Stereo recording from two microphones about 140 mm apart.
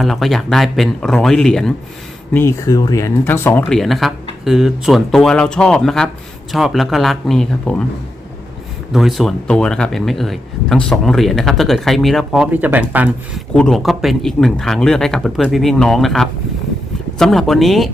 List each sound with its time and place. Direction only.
0.0 s speech: centre (ahead or behind)
2.3 s speech: 15° left (ahead or behind)
3.7 s speech: centre (ahead or behind)
8.9 s speech: centre (ahead or behind)
12.5 s speech: 10° right (ahead or behind)
13.5 s speech: 5° left (ahead or behind)